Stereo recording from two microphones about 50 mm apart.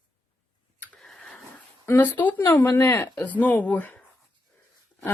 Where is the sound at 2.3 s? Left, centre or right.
Left.